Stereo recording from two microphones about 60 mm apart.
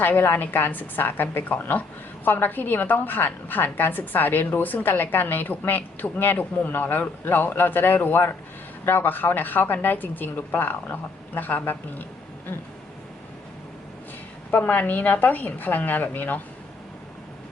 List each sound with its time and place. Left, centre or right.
0.0 s a woman's voice: left
14.5 s a woman's voice: left